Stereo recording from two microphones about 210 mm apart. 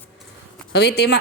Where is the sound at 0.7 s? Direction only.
50° left (ahead or behind).